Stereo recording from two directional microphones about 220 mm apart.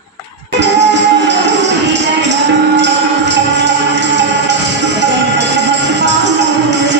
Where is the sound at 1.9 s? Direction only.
55° right (ahead or behind).